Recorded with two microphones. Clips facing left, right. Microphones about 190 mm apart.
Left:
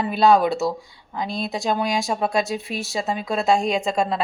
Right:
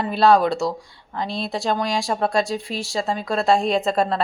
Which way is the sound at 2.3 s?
20° left (ahead or behind).